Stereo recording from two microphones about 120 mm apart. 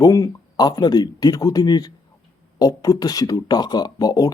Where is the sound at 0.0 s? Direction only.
30° left (ahead or behind).